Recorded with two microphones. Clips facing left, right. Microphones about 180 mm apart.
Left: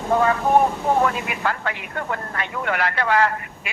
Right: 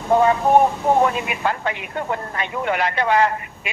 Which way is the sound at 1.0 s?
20° right (ahead or behind).